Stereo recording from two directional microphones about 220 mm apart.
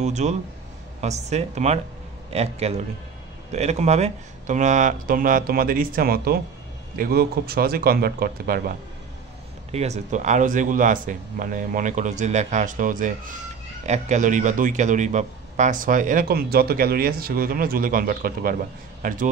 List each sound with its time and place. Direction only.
0.0 s a man's voice: 30° right (ahead or behind)
9.7 s a man's voice: 30° right (ahead or behind)